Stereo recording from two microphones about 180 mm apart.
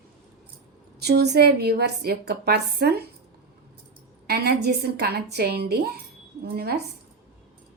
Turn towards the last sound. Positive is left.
turn(degrees=-60)  # may be behind; listen again after turning